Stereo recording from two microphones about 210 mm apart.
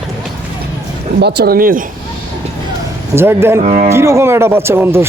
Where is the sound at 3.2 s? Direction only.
10° right (ahead or behind).